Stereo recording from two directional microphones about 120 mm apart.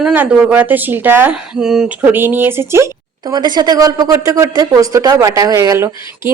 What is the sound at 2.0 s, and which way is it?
Speech, 15° right (ahead or behind).